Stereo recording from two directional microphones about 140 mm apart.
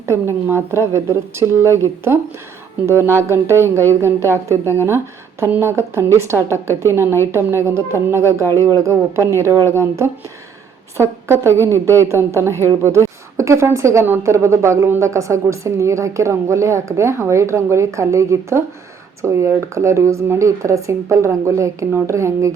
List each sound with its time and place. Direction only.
0.0 s a woman's voice: 20° right (ahead or behind)
10.9 s a woman's voice: 20° right (ahead or behind)